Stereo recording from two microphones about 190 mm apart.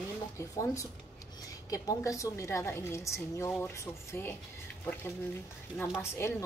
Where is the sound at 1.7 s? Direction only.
15° left (ahead or behind).